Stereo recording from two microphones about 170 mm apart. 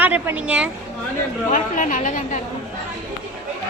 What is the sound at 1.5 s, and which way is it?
Speech, 50° left (ahead or behind).